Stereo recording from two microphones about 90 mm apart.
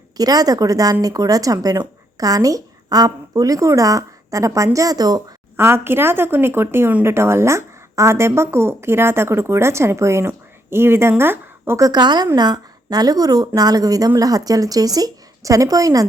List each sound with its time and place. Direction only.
0.2 s a woman's voice: 45° right (ahead or behind)
5.5 s a woman's voice: 25° right (ahead or behind)
11.8 s a woman's voice: 50° right (ahead or behind)